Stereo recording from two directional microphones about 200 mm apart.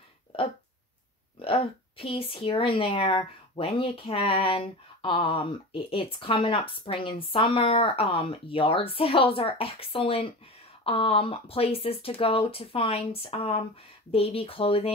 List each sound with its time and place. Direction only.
1.4 s a woman's voice: 25° left (ahead or behind)